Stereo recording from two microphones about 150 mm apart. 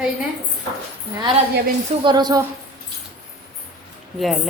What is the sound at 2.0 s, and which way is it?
Speech, 30° right (ahead or behind).